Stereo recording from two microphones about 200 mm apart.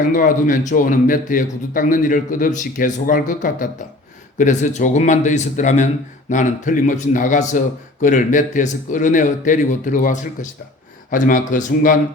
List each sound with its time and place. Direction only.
0.1 s a man's voice: 40° left (ahead or behind)